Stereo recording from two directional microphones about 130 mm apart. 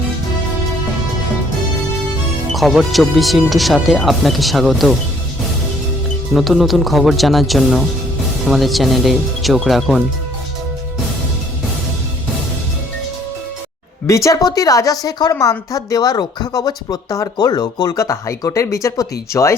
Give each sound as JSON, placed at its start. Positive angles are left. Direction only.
{"t": 2.5, "sound": "speech", "side_deg": 0}
{"t": 6.3, "sound": "speech", "side_deg": 0}
{"t": 14.3, "sound": "a woman's voice", "side_deg": 30}